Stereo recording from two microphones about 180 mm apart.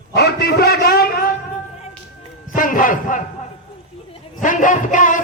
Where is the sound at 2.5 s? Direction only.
50° left (ahead or behind).